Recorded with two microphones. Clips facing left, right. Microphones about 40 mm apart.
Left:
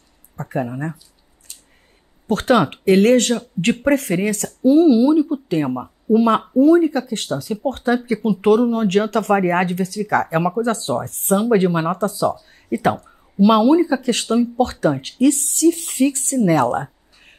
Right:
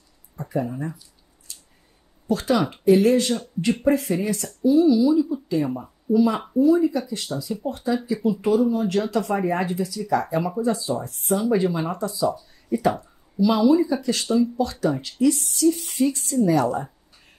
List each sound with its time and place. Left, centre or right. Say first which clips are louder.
0.4 s speech: left 3 dB; left
2.2 s speech: left 5 dB; left